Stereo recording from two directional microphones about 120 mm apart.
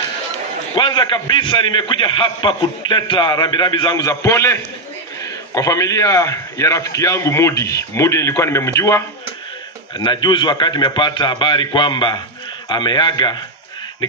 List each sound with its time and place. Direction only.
0.7 s a man's voice: 40° left (ahead or behind); by 9.0 s 25° left (ahead or behind)
9.9 s a man's voice: 40° left (ahead or behind)